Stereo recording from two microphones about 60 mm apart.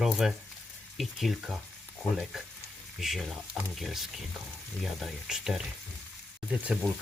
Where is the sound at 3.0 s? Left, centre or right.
Centre.